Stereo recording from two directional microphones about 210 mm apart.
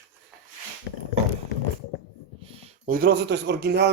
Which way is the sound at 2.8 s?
45° right (ahead or behind).